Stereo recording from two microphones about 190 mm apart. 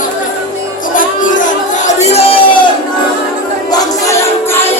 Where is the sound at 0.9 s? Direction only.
45° left (ahead or behind).